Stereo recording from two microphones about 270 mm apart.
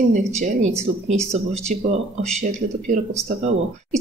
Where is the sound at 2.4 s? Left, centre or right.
Right.